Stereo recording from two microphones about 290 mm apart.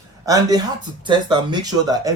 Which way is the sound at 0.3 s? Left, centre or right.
Centre.